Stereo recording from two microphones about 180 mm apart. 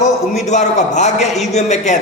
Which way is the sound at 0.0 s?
40° left (ahead or behind).